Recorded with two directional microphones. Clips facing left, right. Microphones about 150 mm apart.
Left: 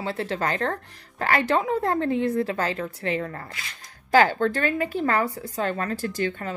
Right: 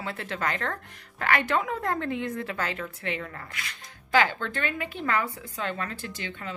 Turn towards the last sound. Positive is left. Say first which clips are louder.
# left 9 dB
turn(degrees=45)  # may be behind; listen again after turning